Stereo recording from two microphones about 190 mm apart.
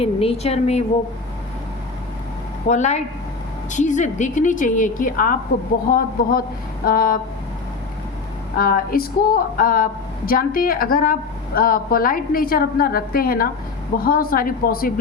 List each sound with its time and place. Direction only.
0.0 s a woman's voice: 30° left (ahead or behind)
2.6 s a woman's voice: 40° left (ahead or behind)
8.5 s a woman's voice: 50° left (ahead or behind)